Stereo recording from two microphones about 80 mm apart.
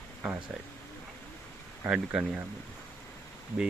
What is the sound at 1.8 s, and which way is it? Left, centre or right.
Speech, centre.